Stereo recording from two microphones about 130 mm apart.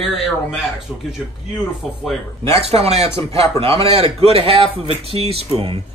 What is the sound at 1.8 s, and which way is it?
Speech, centre (ahead or behind).